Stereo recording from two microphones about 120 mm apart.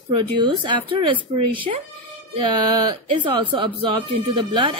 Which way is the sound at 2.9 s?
40° right (ahead or behind).